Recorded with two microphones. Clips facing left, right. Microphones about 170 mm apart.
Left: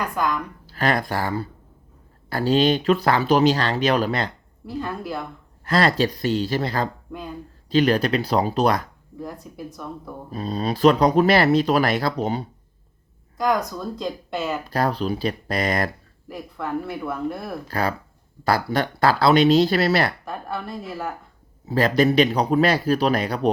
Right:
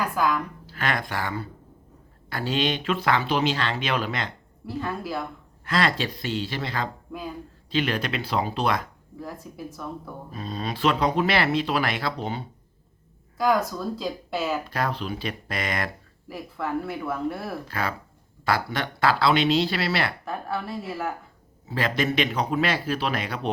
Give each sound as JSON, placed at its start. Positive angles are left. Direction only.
{"t": 0.0, "sound": "speech", "side_deg": -5}
{"t": 0.7, "sound": "speech", "side_deg": 35}
{"t": 4.8, "sound": "speech", "side_deg": 0}
{"t": 5.6, "sound": "speech", "side_deg": 40}
{"t": 9.2, "sound": "speech", "side_deg": 0}
{"t": 10.3, "sound": "speech", "side_deg": 35}
{"t": 13.3, "sound": "speech", "side_deg": -5}
{"t": 14.7, "sound": "speech", "side_deg": 35}
{"t": 16.3, "sound": "speech", "side_deg": -5}
{"t": 17.7, "sound": "speech", "side_deg": 40}
{"t": 20.2, "sound": "speech", "side_deg": 0}
{"t": 21.7, "sound": "speech", "side_deg": 40}